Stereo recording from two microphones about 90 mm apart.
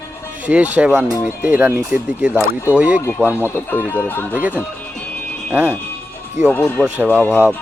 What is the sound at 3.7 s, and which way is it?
Speech, 20° left (ahead or behind).